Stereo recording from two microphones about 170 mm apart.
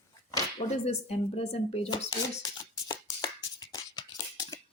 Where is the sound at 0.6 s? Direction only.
30° left (ahead or behind).